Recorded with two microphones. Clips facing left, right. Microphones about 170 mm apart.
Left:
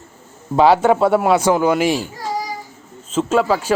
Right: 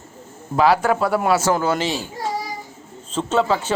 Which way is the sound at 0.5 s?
25° left (ahead or behind).